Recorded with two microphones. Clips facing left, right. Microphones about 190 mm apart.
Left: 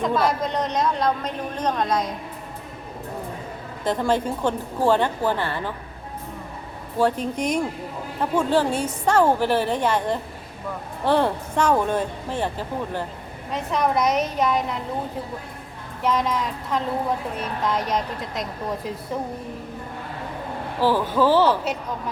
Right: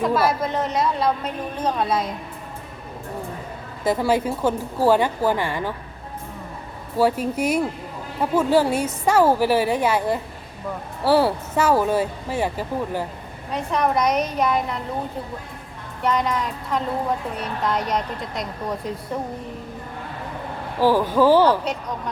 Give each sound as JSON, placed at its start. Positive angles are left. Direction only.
{"t": 0.0, "sound": "a woman's voice", "side_deg": -5}
{"t": 3.8, "sound": "a woman's voice", "side_deg": -10}
{"t": 6.9, "sound": "a woman's voice", "side_deg": -10}
{"t": 13.5, "sound": "a woman's voice", "side_deg": 0}
{"t": 16.0, "sound": "a woman's voice", "side_deg": 0}
{"t": 20.8, "sound": "a woman's voice", "side_deg": -10}
{"t": 21.6, "sound": "a woman's voice", "side_deg": 5}